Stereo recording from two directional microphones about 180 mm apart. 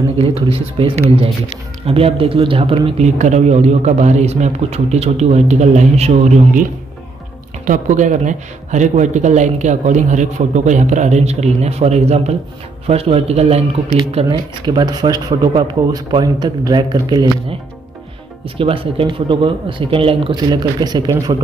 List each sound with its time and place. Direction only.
0.2 s speech: 30° right (ahead or behind)
7.6 s speech: 45° right (ahead or behind)
14.3 s speech: 20° right (ahead or behind)
18.6 s speech: 30° right (ahead or behind)